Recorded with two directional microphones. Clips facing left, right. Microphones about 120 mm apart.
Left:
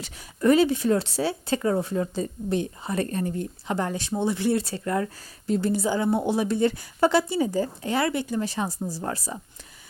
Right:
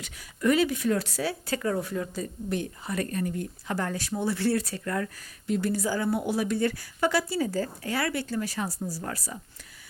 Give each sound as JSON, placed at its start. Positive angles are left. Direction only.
{"t": 0.0, "sound": "speech", "side_deg": 30}